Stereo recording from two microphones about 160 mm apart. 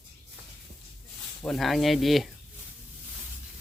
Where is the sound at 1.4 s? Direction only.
Centre (ahead or behind).